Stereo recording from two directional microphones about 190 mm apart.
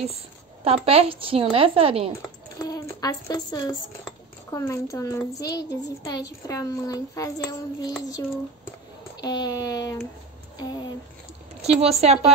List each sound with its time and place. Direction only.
0.7 s a woman's voice: 30° right (ahead or behind)
2.6 s a woman's voice: 20° left (ahead or behind)
9.2 s a woman's voice: 20° left (ahead or behind)
11.6 s speech: 35° right (ahead or behind)